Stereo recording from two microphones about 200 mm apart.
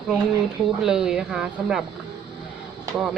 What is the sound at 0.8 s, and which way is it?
Speech, 5° right (ahead or behind).